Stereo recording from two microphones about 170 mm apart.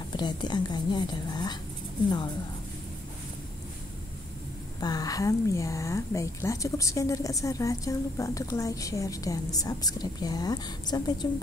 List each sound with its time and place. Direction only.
0.1 s a woman's voice: 25° left (ahead or behind)
4.7 s a woman's voice: 20° left (ahead or behind)